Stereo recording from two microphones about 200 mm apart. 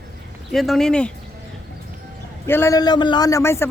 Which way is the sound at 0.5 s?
Centre (ahead or behind).